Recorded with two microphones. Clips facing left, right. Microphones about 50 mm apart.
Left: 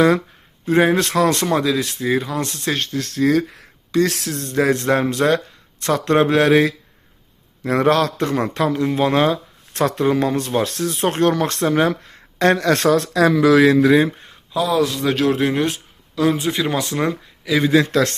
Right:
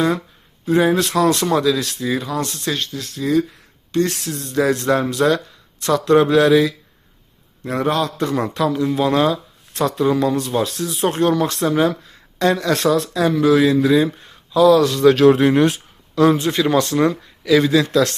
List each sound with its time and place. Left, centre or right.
0.6 s speech: left
4.5 s speech: left
7.6 s a man's voice: left
8.2 s speech: left
13.0 s speech: left
14.2 s a sound: left
14.6 s speech: centre
17.4 s a man's voice: centre
17.7 s speech: left